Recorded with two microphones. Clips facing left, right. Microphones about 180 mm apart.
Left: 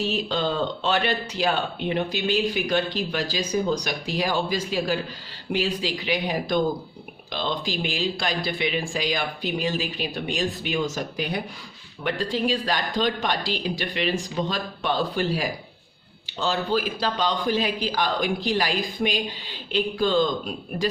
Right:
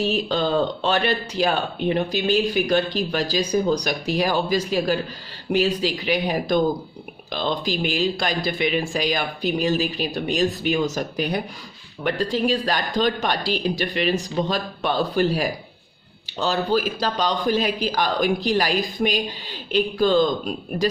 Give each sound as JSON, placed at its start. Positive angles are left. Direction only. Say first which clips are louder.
{"t": 0.0, "sound": "speech", "louder": "right 3 dB", "side_deg": -45}